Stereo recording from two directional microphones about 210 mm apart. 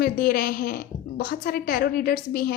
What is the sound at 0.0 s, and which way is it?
Speech, 45° left (ahead or behind).